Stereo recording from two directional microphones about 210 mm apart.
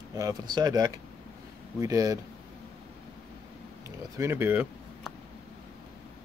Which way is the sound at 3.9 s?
15° right (ahead or behind).